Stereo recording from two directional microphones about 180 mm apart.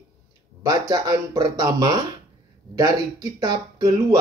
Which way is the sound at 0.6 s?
20° right (ahead or behind).